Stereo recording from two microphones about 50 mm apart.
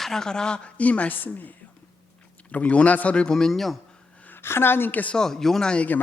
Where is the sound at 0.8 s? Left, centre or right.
Left.